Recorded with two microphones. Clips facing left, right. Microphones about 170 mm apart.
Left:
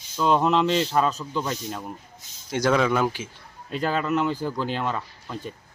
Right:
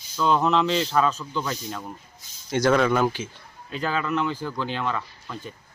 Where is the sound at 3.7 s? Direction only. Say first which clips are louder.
Left 2 dB; 40° left (ahead or behind).